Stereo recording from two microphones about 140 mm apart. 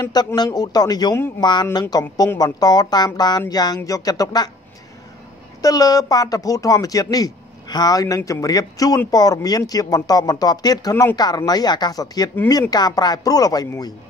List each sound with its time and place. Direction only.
0.0 s speech: 30° left (ahead or behind)
5.6 s speech: 25° left (ahead or behind)